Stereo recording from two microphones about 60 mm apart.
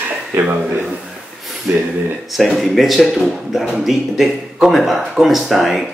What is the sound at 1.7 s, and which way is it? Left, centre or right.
Speech, right.